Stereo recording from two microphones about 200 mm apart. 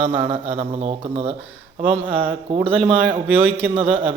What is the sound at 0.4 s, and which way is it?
Speech, 30° right (ahead or behind).